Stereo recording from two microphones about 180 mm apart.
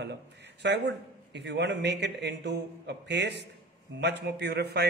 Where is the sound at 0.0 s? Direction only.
70° right (ahead or behind).